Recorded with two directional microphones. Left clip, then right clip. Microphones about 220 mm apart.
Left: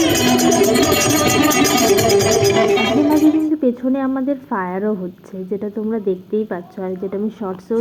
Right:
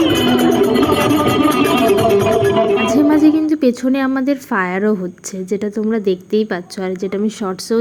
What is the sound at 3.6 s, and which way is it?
A woman's voice, 35° right (ahead or behind).